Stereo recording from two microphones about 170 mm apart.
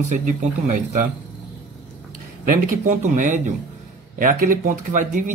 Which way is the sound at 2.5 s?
45° right (ahead or behind).